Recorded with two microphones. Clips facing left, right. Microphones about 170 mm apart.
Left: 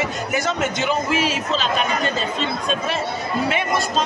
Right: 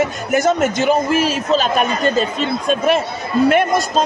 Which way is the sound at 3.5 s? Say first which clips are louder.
Right 7 dB; 45° right (ahead or behind).